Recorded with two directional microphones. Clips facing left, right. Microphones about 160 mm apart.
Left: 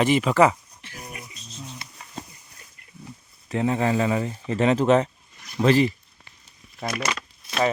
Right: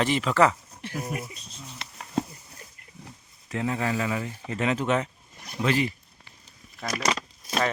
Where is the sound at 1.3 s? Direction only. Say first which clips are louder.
Left 3 dB; 65° right (ahead or behind).